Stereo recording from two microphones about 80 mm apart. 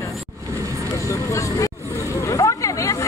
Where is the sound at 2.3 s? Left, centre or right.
Left.